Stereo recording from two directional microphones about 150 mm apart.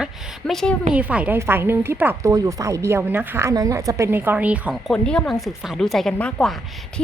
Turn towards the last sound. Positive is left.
turn(degrees=5)  # may be behind; listen again after turning